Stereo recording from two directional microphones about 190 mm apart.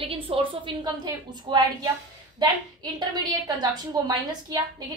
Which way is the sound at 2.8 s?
20° right (ahead or behind).